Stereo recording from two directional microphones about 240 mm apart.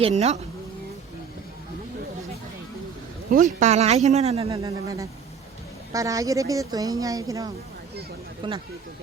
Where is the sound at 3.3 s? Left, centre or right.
Right.